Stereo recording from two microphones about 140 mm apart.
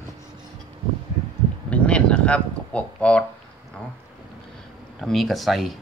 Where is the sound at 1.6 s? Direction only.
10° left (ahead or behind).